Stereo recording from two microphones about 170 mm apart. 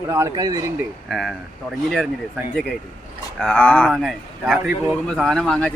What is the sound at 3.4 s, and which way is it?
Speech, 10° left (ahead or behind).